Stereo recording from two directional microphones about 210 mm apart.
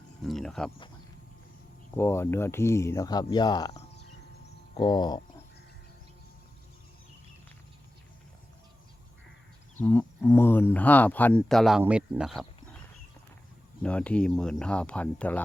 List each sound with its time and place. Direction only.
0.2 s speech: centre (ahead or behind)
2.0 s speech: 10° left (ahead or behind)
4.8 s speech: 20° left (ahead or behind)
9.7 s speech: 10° left (ahead or behind)
13.8 s speech: 5° left (ahead or behind)